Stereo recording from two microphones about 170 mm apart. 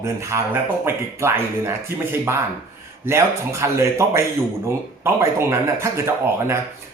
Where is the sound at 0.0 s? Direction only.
15° right (ahead or behind).